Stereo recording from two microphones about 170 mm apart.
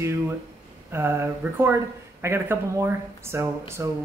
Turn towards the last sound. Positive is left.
turn(degrees=-15)  # may be behind; listen again after turning